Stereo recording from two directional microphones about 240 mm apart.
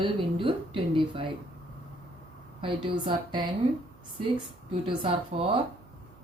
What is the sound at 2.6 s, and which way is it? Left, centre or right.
Speech, right.